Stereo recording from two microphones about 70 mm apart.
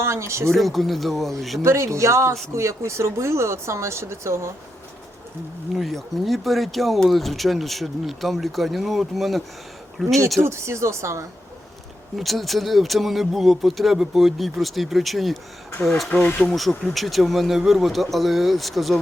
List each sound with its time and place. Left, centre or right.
0.0 s speech: right
0.5 s speech: centre
1.6 s speech: right
5.7 s speech: centre
10.4 s speech: right
12.1 s speech: centre
16.1 s speech: centre
16.6 s speech: centre